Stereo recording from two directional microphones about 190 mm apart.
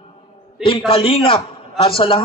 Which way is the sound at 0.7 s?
30° left (ahead or behind).